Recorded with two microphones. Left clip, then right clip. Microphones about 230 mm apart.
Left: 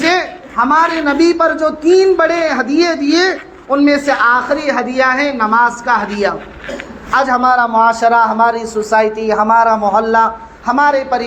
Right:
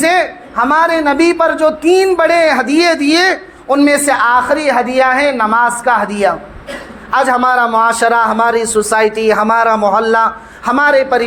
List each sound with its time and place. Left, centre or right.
0.0 s a man's voice: right